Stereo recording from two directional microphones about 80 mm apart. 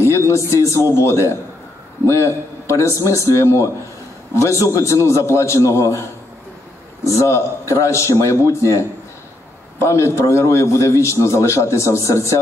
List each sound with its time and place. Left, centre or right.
0.0 s a sound: left
0.5 s a man's voice: left
7.2 s a man's voice: left